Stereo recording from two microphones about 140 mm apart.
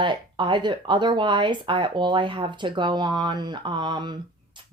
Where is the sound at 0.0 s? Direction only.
35° right (ahead or behind).